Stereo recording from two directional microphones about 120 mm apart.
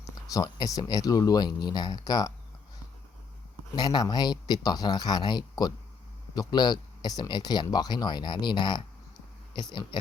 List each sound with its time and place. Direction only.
0.0 s speech: 30° left (ahead or behind)
3.8 s speech: 35° left (ahead or behind)
9.9 s a sound: 40° left (ahead or behind)